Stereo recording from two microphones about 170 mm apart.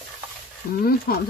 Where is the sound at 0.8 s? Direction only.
65° left (ahead or behind).